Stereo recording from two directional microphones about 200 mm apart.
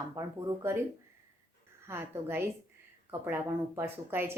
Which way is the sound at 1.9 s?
10° right (ahead or behind).